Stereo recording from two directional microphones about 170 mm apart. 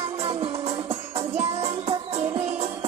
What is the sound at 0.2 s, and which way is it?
Music, 35° right (ahead or behind).